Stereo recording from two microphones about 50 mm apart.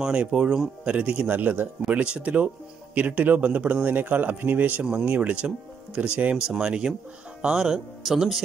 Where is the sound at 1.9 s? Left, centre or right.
Right.